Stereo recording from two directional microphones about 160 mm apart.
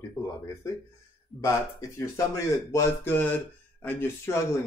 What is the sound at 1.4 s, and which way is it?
Speech, 20° left (ahead or behind).